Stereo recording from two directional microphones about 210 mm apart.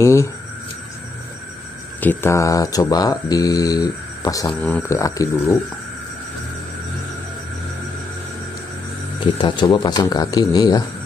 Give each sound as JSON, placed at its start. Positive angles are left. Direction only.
{"t": 0.0, "sound": "speech", "side_deg": 15}
{"t": 2.0, "sound": "speech", "side_deg": 10}
{"t": 4.6, "sound": "speech", "side_deg": 5}
{"t": 4.8, "sound": "speech", "side_deg": 15}
{"t": 9.2, "sound": "speech", "side_deg": 20}